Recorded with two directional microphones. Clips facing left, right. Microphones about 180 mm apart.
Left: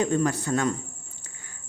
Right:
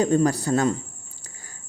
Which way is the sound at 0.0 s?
35° right (ahead or behind).